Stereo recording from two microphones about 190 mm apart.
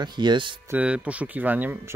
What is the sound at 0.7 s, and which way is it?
Speech, 5° right (ahead or behind).